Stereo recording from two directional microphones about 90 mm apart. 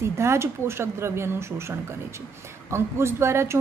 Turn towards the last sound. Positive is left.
turn(degrees=-30)  # may be behind; listen again after turning